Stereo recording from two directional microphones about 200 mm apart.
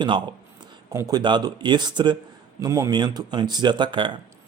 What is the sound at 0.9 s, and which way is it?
Speech, 20° right (ahead or behind).